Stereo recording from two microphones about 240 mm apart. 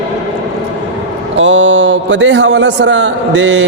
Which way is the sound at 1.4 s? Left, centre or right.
Right.